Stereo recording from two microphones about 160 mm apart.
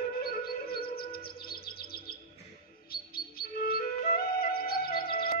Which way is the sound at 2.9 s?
70° left (ahead or behind).